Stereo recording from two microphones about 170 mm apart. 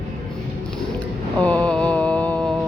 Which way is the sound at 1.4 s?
10° left (ahead or behind).